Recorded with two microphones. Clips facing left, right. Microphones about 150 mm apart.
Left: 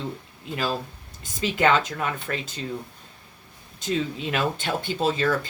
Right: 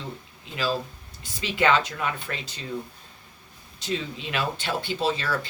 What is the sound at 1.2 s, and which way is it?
Speech, 45° left (ahead or behind).